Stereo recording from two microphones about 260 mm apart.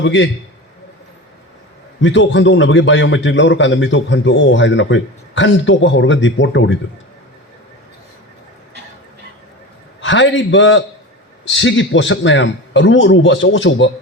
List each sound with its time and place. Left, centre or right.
0.0 s a man's voice: left
2.0 s a man's voice: left
10.0 s a man's voice: left